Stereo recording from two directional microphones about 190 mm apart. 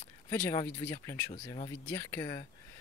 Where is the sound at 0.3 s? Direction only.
15° left (ahead or behind).